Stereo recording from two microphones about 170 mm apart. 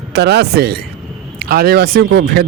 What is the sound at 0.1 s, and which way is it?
A man's voice, 75° right (ahead or behind).